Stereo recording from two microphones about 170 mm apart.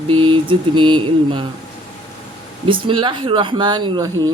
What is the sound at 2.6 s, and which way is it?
Speech, 30° right (ahead or behind).